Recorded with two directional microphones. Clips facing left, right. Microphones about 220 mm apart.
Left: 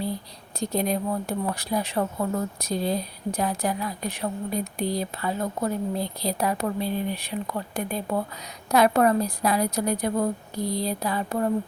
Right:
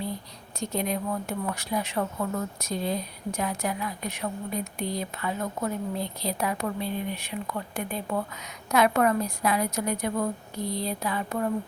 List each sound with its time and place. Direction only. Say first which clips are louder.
0.6 s speech: left 3 dB; 35° left (ahead or behind)